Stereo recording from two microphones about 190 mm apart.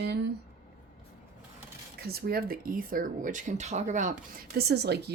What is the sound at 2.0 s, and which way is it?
Speech, 55° right (ahead or behind).